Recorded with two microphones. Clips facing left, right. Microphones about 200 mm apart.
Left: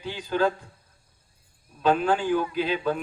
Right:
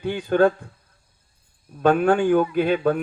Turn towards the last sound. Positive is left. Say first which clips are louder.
# right 6 dB
turn(degrees=-55)  # may be behind; listen again after turning